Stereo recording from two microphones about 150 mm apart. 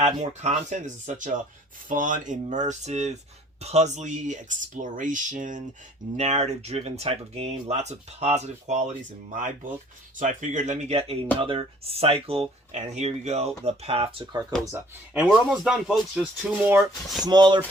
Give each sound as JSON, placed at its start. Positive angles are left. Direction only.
{"t": 0.0, "sound": "speech", "side_deg": -50}
{"t": 14.6, "sound": "speech", "side_deg": -20}
{"t": 15.1, "sound": "speech", "side_deg": -5}
{"t": 16.6, "sound": "speech", "side_deg": -15}
{"t": 17.2, "sound": "speech", "side_deg": -30}